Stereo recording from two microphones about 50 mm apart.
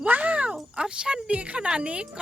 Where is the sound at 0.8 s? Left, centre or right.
Centre.